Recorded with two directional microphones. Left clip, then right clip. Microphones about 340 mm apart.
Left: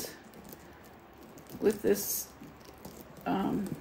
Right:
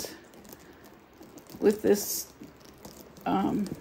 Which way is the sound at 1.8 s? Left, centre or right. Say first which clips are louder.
Right 4 dB; right.